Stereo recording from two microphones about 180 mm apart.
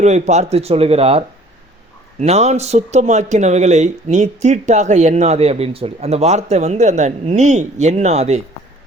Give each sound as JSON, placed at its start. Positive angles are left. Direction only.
{"t": 0.0, "sound": "speech", "side_deg": -40}